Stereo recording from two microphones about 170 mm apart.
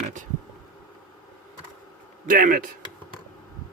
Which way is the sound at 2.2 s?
50° right (ahead or behind).